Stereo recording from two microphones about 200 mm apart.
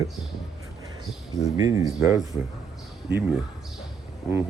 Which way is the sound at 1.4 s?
15° right (ahead or behind).